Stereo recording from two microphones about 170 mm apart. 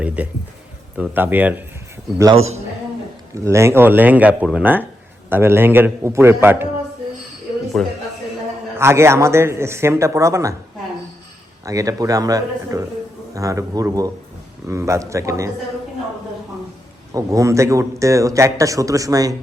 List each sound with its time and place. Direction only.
0.2 s speech: 10° right (ahead or behind)
3.3 s speech: 15° right (ahead or behind)
7.8 s a man's voice: 5° left (ahead or behind)
8.8 s speech: 15° right (ahead or behind)
11.6 s speech: 20° right (ahead or behind)
17.2 s speech: 20° right (ahead or behind)